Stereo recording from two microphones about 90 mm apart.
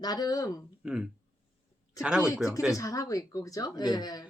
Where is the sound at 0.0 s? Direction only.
50° left (ahead or behind).